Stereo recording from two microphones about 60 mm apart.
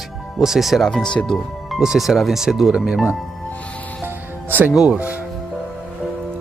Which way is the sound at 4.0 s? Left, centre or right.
Right.